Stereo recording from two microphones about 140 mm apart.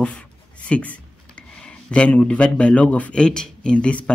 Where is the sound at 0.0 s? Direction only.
10° left (ahead or behind).